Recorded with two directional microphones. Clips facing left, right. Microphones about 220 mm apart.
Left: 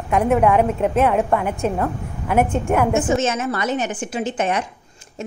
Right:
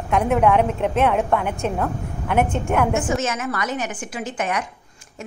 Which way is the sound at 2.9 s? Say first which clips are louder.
Left 4 dB; 25° left (ahead or behind).